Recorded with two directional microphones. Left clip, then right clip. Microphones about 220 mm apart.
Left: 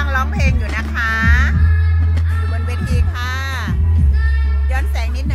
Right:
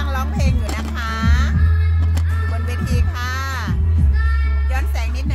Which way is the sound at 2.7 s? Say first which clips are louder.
Left 1 dB; centre (ahead or behind).